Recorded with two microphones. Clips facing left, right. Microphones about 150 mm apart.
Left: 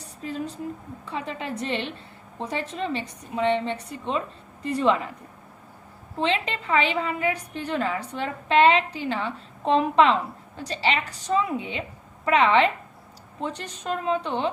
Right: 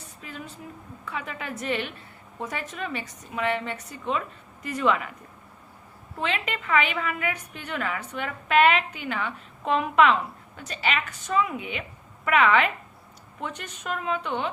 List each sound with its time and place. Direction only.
0.0 s a woman's voice: 35° left (ahead or behind)
6.1 s a woman's voice: 30° left (ahead or behind)